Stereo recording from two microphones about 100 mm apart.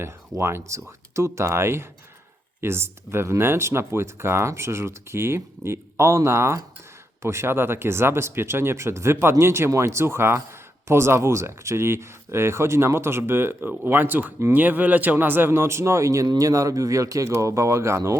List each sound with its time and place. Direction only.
0.0 s speech: 25° right (ahead or behind)